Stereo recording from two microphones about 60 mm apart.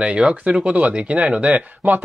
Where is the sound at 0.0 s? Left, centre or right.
Centre.